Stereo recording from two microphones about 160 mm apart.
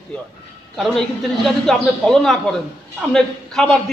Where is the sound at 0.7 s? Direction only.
Centre (ahead or behind).